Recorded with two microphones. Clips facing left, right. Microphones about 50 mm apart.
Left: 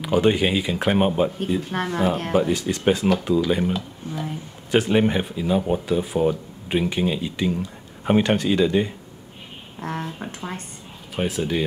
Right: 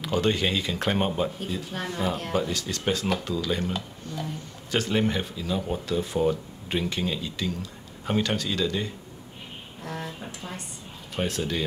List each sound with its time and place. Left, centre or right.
0.0 s speech: centre
1.9 s speech: left
2.3 s speech: left
9.8 s a sound: left
11.1 s speech: centre